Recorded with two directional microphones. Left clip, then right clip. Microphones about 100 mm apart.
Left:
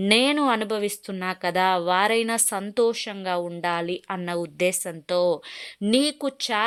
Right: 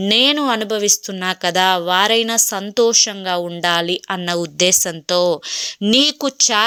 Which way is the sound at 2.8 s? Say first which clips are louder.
Right 10 dB; 35° right (ahead or behind).